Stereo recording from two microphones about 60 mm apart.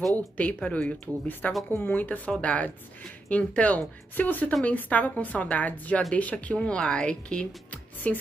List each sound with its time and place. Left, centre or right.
0.4 s speech: left